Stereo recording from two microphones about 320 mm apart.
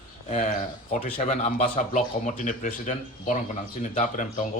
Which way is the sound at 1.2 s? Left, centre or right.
Left.